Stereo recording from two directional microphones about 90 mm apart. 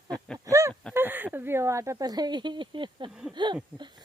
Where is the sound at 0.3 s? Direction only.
40° right (ahead or behind).